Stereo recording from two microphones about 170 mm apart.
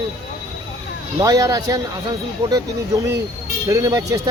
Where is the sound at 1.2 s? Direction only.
20° right (ahead or behind).